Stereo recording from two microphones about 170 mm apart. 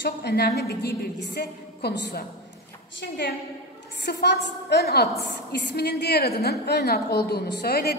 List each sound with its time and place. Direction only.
0.0 s a woman's voice: 75° left (ahead or behind)
5.5 s a woman's voice: 85° left; by 8.0 s 65° left (ahead or behind)